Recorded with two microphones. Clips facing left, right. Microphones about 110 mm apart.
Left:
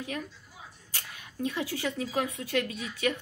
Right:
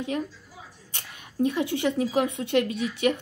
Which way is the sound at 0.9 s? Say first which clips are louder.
Right 9 dB; 25° right (ahead or behind).